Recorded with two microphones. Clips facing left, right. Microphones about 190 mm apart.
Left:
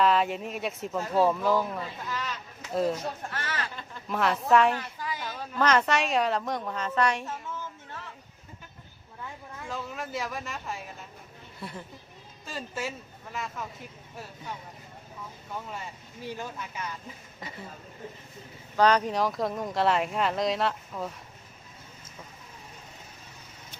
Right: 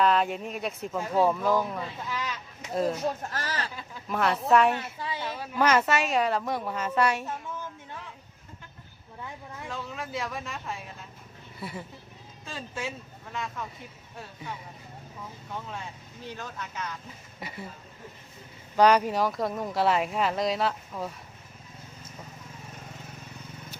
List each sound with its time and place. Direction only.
0.0 s speech: centre (ahead or behind)
0.9 s speech: 15° right (ahead or behind)
1.3 s speech: centre (ahead or behind)
2.0 s speech: 10° right (ahead or behind)
2.7 s speech: centre (ahead or behind)
3.3 s speech: 35° right (ahead or behind)
3.8 s speech: centre (ahead or behind)
4.7 s a sound: 25° right (ahead or behind)
5.4 s speech: 10° right (ahead or behind)
9.6 s speech: centre (ahead or behind)
15.5 s speech: 5° left (ahead or behind)
18.8 s speech: 10° right (ahead or behind)